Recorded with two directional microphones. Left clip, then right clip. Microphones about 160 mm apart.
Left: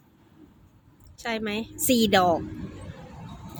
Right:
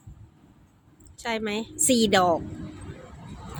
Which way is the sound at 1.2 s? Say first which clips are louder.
Right 1 dB; centre (ahead or behind).